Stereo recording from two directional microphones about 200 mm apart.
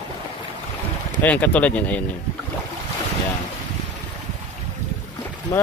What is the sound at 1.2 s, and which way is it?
Speech, 5° left (ahead or behind).